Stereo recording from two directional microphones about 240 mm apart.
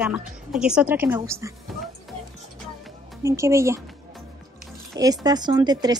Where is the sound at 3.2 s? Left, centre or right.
Centre.